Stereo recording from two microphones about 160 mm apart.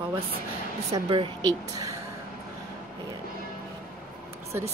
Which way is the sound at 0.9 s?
30° right (ahead or behind).